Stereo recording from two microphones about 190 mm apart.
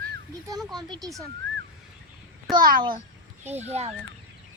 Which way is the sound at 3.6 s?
35° right (ahead or behind).